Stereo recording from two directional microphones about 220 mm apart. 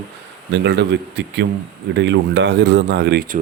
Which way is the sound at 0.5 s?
50° right (ahead or behind).